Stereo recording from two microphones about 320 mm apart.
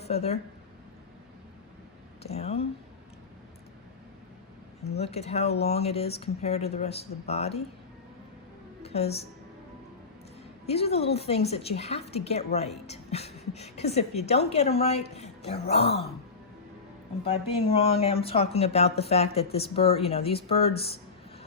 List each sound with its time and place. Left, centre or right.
0.0 s speech: centre
2.2 s a woman's voice: centre
4.9 s a woman's voice: centre
8.8 s music: centre
10.7 s a woman's voice: centre
17.2 s speech: centre